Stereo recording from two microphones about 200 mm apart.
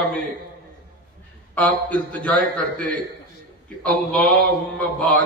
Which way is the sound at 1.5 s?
5° left (ahead or behind).